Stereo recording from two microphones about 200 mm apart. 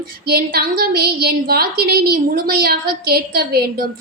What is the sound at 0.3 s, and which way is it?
A woman's voice, 50° right (ahead or behind).